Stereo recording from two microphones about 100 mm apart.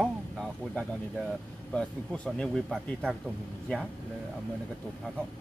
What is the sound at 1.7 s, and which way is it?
Speech, 10° left (ahead or behind).